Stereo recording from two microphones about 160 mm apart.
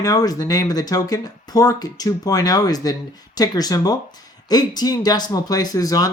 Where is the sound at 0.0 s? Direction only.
25° left (ahead or behind).